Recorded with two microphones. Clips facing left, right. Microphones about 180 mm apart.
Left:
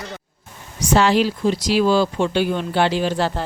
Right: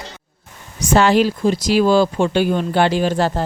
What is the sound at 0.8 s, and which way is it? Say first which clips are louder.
Speech: right 2 dB; 50° right (ahead or behind).